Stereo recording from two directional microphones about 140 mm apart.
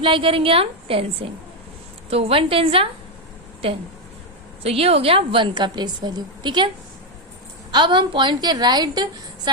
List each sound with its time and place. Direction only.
0.0 s a woman's voice: 40° right (ahead or behind)
7.7 s a woman's voice: 35° right (ahead or behind)